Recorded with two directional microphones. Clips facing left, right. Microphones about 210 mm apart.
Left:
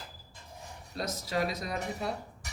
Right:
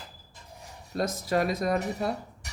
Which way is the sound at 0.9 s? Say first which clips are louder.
Right 6 dB; 50° right (ahead or behind).